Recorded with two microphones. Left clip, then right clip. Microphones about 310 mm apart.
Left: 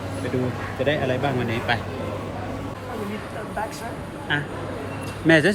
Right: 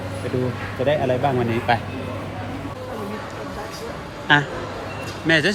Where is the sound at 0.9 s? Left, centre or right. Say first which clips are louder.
Right 4 dB; centre.